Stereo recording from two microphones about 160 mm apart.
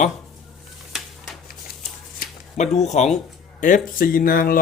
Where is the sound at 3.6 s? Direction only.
60° left (ahead or behind).